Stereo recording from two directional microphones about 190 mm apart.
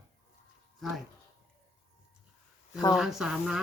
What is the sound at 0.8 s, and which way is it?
Speech, centre (ahead or behind).